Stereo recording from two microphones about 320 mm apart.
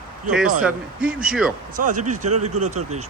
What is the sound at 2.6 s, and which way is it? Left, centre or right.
Speech, right.